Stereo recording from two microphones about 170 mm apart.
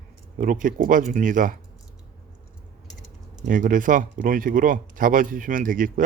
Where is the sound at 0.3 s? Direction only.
50° right (ahead or behind).